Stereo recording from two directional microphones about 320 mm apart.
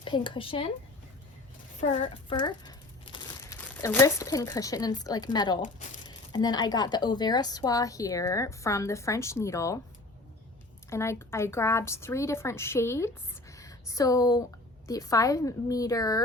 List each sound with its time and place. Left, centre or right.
0.0 s speech: centre
1.8 s speech: left
10.8 s speech: centre
13.5 s a sound: centre
14.8 s speech: centre